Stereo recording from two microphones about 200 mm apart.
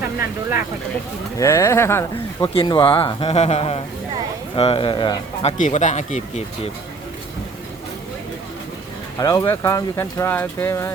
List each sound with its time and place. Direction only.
1.4 s speech: 15° left (ahead or behind)
2.5 s a man's voice: 25° left (ahead or behind)
5.5 s speech: 35° left (ahead or behind)
9.1 s speech: 20° left (ahead or behind)